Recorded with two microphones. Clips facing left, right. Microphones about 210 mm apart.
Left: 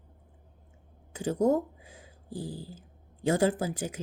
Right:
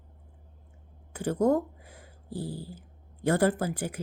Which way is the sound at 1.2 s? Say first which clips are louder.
Right 1 dB; 15° left (ahead or behind).